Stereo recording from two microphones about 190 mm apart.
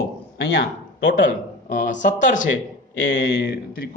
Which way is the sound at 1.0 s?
45° left (ahead or behind).